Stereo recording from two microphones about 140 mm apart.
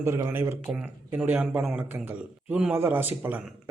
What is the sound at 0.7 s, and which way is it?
Speech, 10° right (ahead or behind).